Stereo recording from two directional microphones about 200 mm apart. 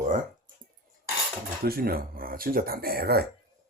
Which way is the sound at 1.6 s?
50° right (ahead or behind).